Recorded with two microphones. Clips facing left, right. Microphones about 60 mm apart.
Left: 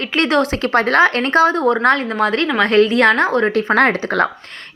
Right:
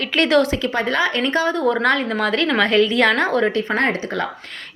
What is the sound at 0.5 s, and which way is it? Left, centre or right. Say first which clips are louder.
Speech: left 5 dB; left.